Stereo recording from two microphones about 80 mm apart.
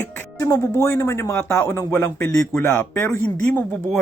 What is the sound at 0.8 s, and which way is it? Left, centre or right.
A man's voice, left.